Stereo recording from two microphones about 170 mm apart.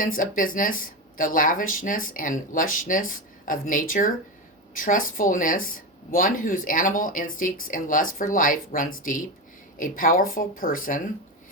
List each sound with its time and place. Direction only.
0.0 s speech: 50° left (ahead or behind)